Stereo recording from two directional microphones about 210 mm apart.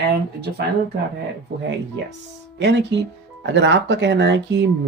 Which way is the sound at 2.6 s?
55° right (ahead or behind).